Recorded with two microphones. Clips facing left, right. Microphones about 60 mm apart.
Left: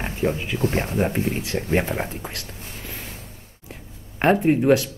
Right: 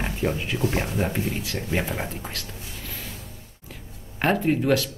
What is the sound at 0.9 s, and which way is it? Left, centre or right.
Speech, left.